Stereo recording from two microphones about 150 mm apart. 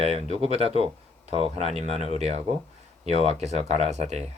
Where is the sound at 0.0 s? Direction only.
45° right (ahead or behind).